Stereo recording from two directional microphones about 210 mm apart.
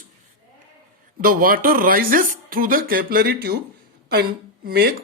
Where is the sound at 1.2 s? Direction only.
40° right (ahead or behind).